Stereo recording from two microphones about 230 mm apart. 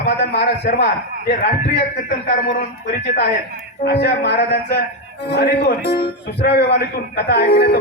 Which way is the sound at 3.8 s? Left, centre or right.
Left.